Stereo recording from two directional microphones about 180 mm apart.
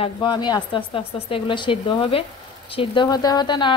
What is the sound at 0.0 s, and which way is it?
Speech, 25° left (ahead or behind).